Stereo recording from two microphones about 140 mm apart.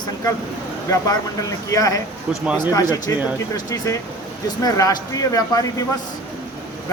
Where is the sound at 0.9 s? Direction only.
25° left (ahead or behind).